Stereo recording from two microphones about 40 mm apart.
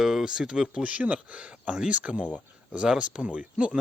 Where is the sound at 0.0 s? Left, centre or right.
Centre.